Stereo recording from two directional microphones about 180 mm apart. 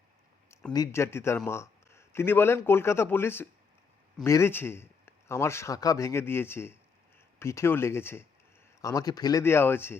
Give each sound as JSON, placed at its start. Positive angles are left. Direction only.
{"t": 0.7, "sound": "speech", "side_deg": 15}